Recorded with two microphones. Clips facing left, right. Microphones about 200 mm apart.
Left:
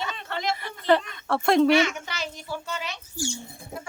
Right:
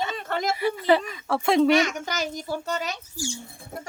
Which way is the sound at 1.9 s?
40° right (ahead or behind).